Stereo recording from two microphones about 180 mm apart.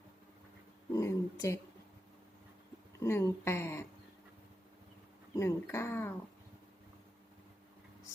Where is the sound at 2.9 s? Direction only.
15° left (ahead or behind).